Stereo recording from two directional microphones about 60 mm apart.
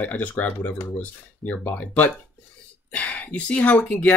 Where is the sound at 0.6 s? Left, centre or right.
Left.